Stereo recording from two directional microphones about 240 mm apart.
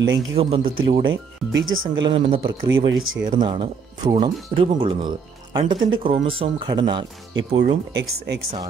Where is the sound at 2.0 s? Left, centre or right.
Right.